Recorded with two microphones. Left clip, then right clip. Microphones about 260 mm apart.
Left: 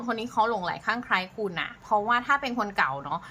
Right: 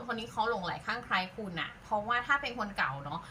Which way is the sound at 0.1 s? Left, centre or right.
Centre.